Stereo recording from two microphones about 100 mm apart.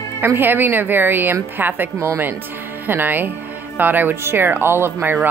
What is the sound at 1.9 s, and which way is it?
Speech, 30° right (ahead or behind).